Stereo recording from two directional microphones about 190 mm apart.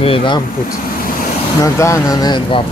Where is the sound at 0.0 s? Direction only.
30° left (ahead or behind).